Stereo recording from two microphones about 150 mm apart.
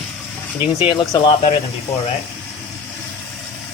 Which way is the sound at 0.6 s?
35° left (ahead or behind).